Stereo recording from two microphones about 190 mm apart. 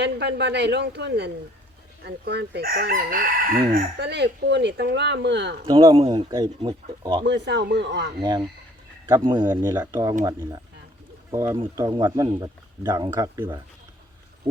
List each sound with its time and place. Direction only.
0.0 s crowing: 65° right (ahead or behind)
5.6 s speech: 20° right (ahead or behind)
7.3 s crowing: 65° right (ahead or behind)
8.2 s speech: 20° right (ahead or behind)
11.3 s speech: 15° right (ahead or behind)
14.5 s a sound: 10° right (ahead or behind)